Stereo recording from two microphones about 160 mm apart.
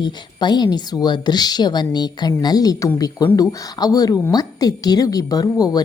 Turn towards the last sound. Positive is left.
turn(degrees=25)  # may be behind; listen again after turning